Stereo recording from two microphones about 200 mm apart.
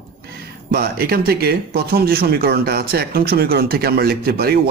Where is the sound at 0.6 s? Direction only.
50° right (ahead or behind).